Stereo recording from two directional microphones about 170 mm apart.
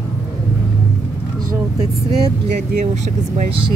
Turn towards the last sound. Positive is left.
turn(degrees=-45)  # may be behind; listen again after turning